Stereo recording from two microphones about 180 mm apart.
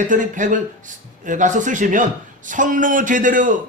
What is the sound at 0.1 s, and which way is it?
Speech, 45° right (ahead or behind).